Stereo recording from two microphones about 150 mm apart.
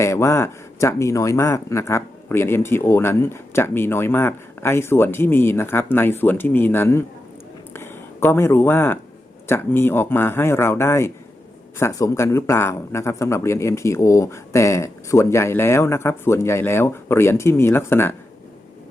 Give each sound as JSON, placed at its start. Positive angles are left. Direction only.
{"t": 0.0, "sound": "speech", "side_deg": 20}
{"t": 7.7, "sound": "a sound", "side_deg": 15}
{"t": 9.5, "sound": "speech", "side_deg": 15}